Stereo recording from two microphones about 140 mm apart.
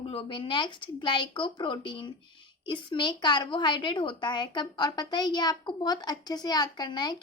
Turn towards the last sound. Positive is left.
turn(degrees=30)  # may be behind; listen again after turning